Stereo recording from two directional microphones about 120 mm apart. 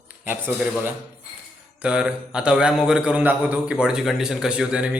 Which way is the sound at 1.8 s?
5° right (ahead or behind).